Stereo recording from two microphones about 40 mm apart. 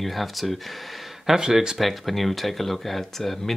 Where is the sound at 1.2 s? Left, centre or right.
Centre.